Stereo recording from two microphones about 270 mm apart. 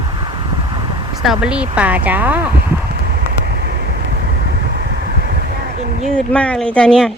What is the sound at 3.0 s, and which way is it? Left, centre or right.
Vehicle, right.